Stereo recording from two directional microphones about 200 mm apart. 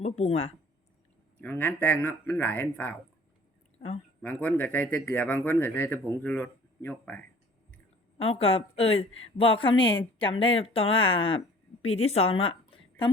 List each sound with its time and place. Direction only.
0.0 s speech: 35° left (ahead or behind)
1.4 s speech: 10° left (ahead or behind)
4.2 s speech: 5° left (ahead or behind)
8.2 s a woman's voice: 30° left (ahead or behind)